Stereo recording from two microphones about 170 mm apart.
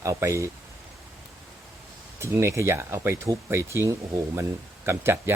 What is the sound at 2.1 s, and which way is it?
Speech, 15° right (ahead or behind).